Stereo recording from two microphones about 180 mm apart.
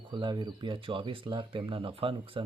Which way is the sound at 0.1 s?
25° right (ahead or behind).